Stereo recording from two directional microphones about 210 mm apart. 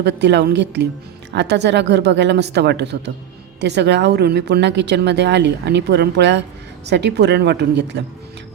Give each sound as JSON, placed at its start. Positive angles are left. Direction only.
{"t": 0.0, "sound": "a woman's voice", "side_deg": -55}